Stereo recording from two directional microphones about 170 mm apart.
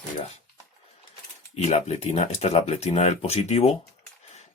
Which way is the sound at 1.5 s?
40° left (ahead or behind).